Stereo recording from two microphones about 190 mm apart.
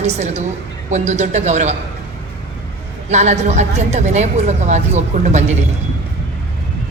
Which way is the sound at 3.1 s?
35° right (ahead or behind).